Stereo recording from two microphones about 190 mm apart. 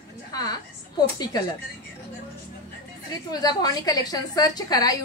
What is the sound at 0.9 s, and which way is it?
Speech, 20° left (ahead or behind).